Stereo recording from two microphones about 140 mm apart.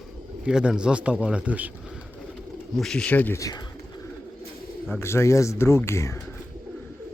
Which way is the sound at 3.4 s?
25° left (ahead or behind).